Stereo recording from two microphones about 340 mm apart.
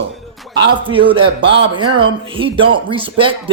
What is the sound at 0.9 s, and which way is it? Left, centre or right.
A man's voice, centre.